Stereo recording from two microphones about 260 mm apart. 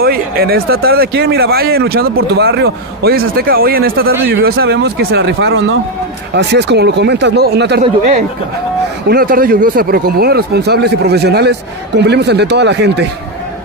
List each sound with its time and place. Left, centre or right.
0.0 s speech: right
7.8 s speech: right